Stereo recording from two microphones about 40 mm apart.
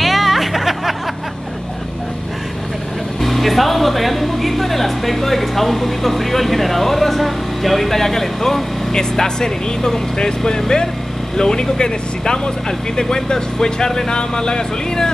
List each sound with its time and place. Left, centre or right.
0.0 s music: centre
3.2 s speech: centre